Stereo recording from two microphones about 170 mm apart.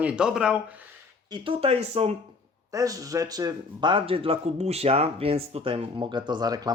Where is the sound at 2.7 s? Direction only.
20° right (ahead or behind).